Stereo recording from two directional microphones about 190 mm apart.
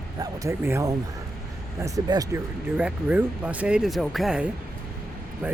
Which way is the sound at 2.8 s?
5° right (ahead or behind).